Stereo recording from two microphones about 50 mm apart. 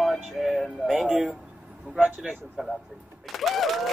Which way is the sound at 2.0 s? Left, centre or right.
Centre.